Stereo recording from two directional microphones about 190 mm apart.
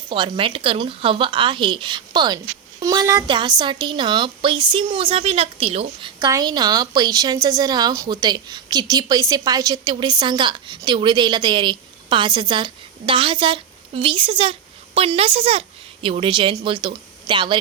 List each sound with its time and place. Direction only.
0.1 s a woman's voice: 25° right (ahead or behind)